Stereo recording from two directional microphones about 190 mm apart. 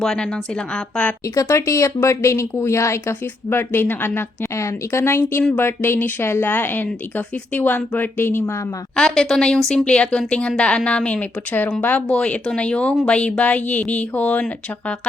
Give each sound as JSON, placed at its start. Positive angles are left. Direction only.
{"t": 0.0, "sound": "a woman's voice", "side_deg": 0}
{"t": 1.4, "sound": "a woman's voice", "side_deg": 15}